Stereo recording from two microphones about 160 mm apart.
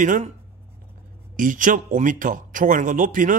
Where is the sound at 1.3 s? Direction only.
55° right (ahead or behind).